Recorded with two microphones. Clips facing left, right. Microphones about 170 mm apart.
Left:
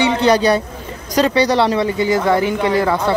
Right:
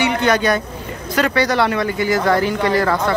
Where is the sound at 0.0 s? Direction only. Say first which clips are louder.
Left 3 dB; 30° left (ahead or behind).